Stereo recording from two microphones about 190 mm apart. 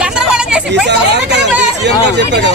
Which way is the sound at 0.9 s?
65° right (ahead or behind).